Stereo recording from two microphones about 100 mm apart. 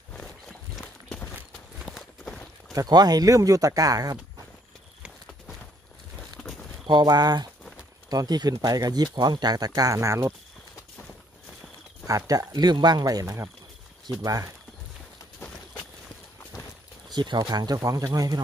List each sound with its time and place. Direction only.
0.1 s a sound: 5° left (ahead or behind)
1.9 s walk: centre (ahead or behind)
2.7 s speech: 40° right (ahead or behind)
6.9 s speech: 45° right (ahead or behind)
12.1 s speech: 35° right (ahead or behind)
17.1 s speech: 45° right (ahead or behind)